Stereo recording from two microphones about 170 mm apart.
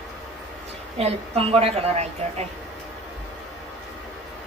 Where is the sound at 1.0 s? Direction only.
35° right (ahead or behind).